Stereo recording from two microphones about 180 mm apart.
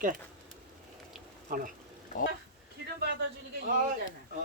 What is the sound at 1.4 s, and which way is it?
Speech, 50° right (ahead or behind).